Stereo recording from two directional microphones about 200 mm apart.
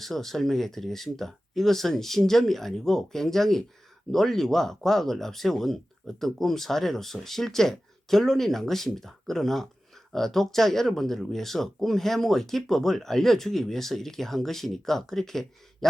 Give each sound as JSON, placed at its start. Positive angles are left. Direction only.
{"t": 0.0, "sound": "speech", "side_deg": 0}